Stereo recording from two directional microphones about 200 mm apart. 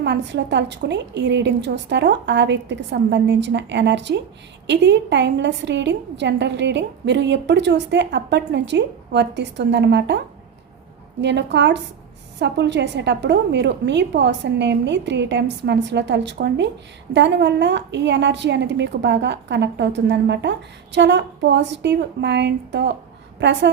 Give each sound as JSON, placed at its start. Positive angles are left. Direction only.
{"t": 0.0, "sound": "a woman's voice", "side_deg": -60}
{"t": 11.2, "sound": "a woman's voice", "side_deg": -60}